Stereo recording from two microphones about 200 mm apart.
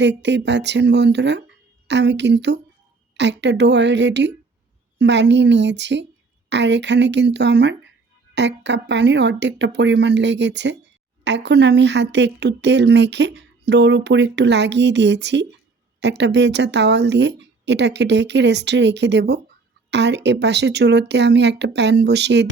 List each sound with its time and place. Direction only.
0.0 s speech: 60° right (ahead or behind)